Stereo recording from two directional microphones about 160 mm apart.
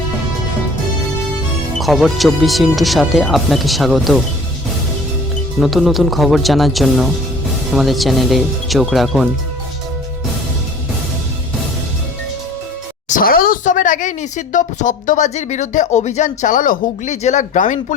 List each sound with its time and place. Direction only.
1.8 s speech: centre (ahead or behind)
5.5 s speech: centre (ahead or behind)
13.1 s speech: 60° left (ahead or behind)